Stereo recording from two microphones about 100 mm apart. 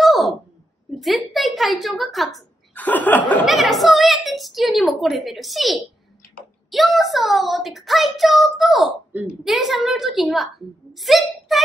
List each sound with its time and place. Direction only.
0.0 s a sound: centre (ahead or behind)
1.0 s a woman's voice: centre (ahead or behind)
2.7 s chuckle: 20° left (ahead or behind)
3.4 s a woman's voice: centre (ahead or behind)